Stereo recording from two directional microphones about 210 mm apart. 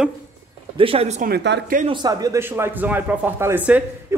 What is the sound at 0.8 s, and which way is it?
Speech, 25° right (ahead or behind).